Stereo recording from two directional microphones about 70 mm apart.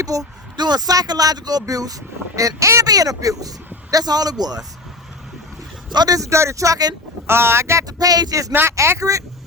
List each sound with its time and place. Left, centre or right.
0.0 s speech: right
0.5 s speech: right
2.8 s a man's voice: right
5.9 s speech: right
6.1 s speech: right
7.3 s speech: right
7.9 s speech: right
8.7 s speech: right